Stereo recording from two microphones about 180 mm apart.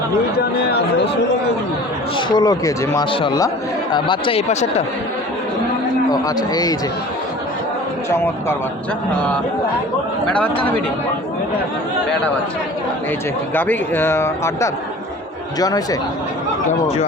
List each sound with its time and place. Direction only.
0.3 s speech: 65° left (ahead or behind)
2.1 s speech: 20° left (ahead or behind)
6.2 s speech: 20° left (ahead or behind)
8.1 s a man's voice: 15° left (ahead or behind)
10.2 s a man's voice: 5° left (ahead or behind)
13.5 s a man's voice: 10° left (ahead or behind)